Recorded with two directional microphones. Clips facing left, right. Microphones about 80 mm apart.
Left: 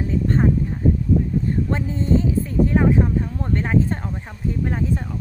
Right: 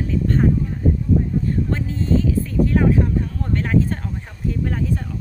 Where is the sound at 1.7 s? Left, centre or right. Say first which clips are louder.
Left 1 dB; left.